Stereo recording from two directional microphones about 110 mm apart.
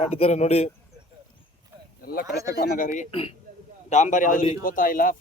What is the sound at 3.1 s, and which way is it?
Speech, 55° left (ahead or behind).